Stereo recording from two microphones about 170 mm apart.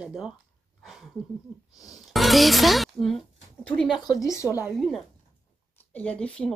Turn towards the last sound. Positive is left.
turn(degrees=5)  # may be behind; listen again after turning